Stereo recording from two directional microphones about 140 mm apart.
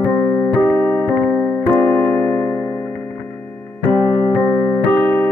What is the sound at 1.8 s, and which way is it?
Music, 15° left (ahead or behind).